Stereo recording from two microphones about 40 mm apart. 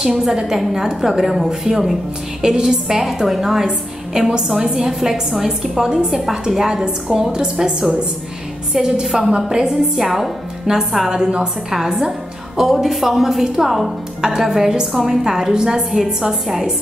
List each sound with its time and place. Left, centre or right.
0.0 s a woman's voice: centre
9.0 s a woman's voice: centre
11.1 s a woman's voice: right
12.7 s a woman's voice: centre